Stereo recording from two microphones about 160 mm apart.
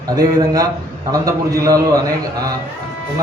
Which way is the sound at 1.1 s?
20° right (ahead or behind).